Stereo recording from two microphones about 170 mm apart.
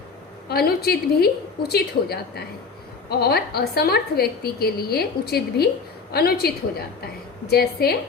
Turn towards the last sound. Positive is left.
turn(degrees=70)  # may be behind; listen again after turning